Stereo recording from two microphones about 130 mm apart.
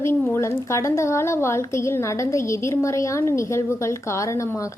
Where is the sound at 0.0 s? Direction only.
15° left (ahead or behind).